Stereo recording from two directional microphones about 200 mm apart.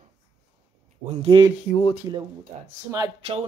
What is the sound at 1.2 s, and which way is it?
Speech, 20° right (ahead or behind).